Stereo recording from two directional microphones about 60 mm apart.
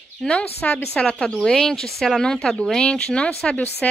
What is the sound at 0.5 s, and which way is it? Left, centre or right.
Speech, left.